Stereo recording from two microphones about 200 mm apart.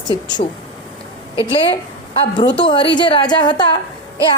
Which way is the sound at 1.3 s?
25° left (ahead or behind).